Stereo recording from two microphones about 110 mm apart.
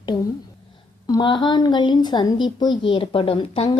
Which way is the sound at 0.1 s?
45° left (ahead or behind).